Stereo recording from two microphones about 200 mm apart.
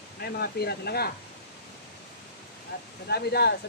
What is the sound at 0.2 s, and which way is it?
Speech, 50° left (ahead or behind).